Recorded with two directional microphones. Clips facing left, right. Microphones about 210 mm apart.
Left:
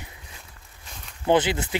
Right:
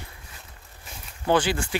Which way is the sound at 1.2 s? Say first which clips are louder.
Left 2 dB; 20° left (ahead or behind).